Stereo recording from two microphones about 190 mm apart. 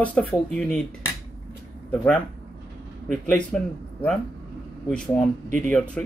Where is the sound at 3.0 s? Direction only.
5° left (ahead or behind).